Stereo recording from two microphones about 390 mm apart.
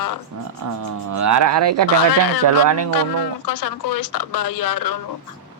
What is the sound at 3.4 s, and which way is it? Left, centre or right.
A woman's voice, left.